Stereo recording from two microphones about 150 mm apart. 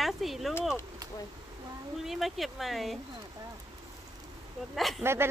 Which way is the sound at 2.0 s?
Centre (ahead or behind).